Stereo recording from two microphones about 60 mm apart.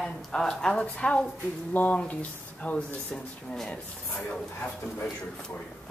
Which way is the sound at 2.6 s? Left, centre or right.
Centre.